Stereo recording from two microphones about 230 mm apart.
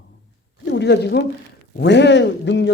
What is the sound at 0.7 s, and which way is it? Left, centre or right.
A man's voice, left.